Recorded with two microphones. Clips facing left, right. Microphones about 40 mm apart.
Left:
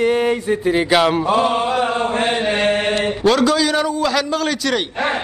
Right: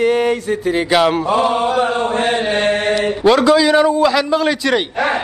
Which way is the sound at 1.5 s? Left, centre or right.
Right.